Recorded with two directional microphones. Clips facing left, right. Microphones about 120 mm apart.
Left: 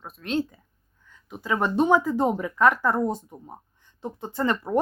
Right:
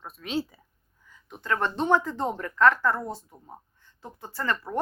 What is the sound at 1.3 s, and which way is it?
Speech, 10° left (ahead or behind).